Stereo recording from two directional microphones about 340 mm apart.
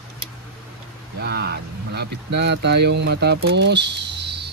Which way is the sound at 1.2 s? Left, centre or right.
Right.